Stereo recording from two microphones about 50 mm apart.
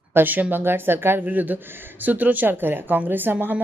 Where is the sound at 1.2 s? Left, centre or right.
Right.